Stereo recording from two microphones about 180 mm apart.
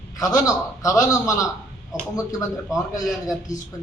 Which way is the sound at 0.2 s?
20° left (ahead or behind).